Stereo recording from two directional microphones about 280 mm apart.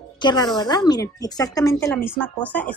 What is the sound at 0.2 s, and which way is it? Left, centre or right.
A woman's voice, centre.